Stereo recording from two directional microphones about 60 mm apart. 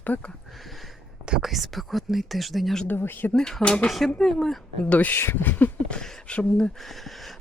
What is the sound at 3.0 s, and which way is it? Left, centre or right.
Speech, left.